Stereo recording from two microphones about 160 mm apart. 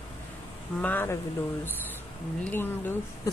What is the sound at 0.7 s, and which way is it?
Speech, 10° left (ahead or behind).